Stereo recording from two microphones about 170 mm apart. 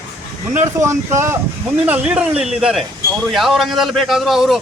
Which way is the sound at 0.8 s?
15° right (ahead or behind).